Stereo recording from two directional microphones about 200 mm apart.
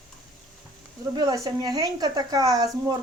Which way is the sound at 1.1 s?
20° right (ahead or behind).